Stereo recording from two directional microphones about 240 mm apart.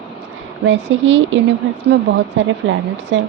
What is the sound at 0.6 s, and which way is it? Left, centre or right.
Speech, right.